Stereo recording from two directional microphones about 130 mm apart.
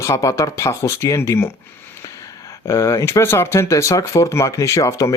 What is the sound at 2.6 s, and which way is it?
Speech, 20° left (ahead or behind).